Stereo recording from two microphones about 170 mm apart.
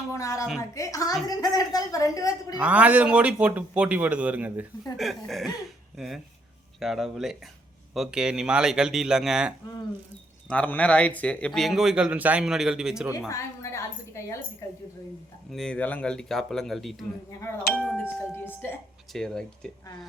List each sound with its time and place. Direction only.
0.1 s a woman's voice: 20° left (ahead or behind)
2.6 s speech: 10° right (ahead or behind)
5.6 s a sound: centre (ahead or behind)
6.7 s speech: centre (ahead or behind)
10.5 s speech: 10° left (ahead or behind)
13.1 s a woman's voice: 15° left (ahead or behind)
15.5 s speech: 5° left (ahead or behind)
18.0 s a woman's voice: 10° left (ahead or behind)